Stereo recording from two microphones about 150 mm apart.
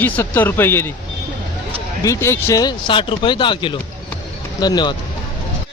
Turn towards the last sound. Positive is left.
turn(degrees=30)  # may be behind; listen again after turning